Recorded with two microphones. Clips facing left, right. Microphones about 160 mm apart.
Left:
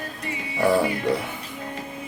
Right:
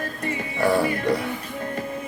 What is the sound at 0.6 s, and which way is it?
Speech, centre (ahead or behind).